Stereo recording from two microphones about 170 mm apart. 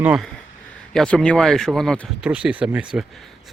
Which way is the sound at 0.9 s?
5° left (ahead or behind).